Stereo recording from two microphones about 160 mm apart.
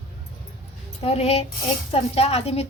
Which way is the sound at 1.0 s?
40° left (ahead or behind).